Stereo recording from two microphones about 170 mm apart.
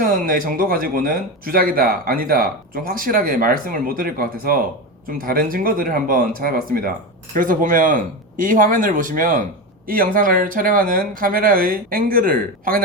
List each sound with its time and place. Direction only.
0.3 s speech: 55° right (ahead or behind)